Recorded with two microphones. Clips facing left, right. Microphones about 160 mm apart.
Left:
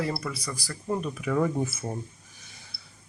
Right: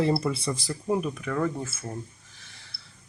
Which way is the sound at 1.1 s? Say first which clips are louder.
Left 2 dB; 5° left (ahead or behind).